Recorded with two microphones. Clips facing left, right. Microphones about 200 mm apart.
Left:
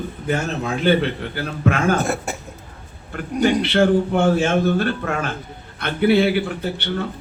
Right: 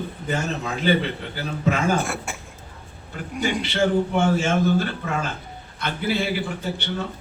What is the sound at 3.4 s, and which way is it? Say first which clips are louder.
A man's voice: left 6 dB; 65° left (ahead or behind).